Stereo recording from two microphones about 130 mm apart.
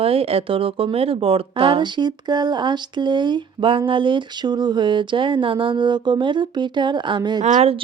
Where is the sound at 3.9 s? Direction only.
40° right (ahead or behind).